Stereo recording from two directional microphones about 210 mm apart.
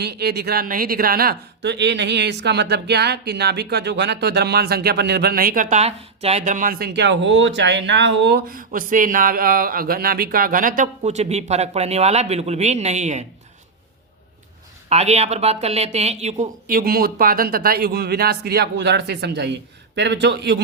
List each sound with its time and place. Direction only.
0.0 s speech: 50° right (ahead or behind); by 13.2 s 35° right (ahead or behind)
14.8 s a man's voice: 30° right (ahead or behind); by 20.6 s 55° right (ahead or behind)